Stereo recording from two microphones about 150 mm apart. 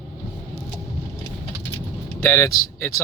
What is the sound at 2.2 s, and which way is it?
Speech, 20° left (ahead or behind).